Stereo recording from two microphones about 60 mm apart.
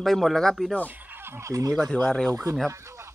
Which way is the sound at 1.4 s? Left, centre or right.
Right.